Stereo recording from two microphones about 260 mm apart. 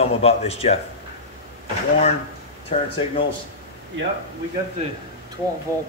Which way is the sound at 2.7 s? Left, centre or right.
Left.